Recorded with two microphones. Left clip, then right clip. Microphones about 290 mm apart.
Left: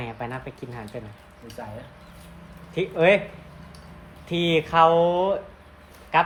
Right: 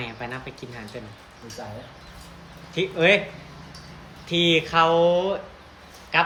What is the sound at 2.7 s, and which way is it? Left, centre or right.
Speech, centre.